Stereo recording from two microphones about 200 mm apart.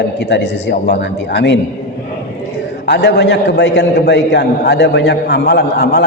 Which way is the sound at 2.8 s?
55° left (ahead or behind).